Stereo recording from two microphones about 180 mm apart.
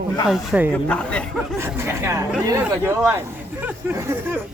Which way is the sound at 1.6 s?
15° right (ahead or behind).